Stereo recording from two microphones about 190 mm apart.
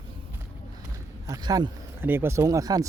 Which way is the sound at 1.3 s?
20° right (ahead or behind).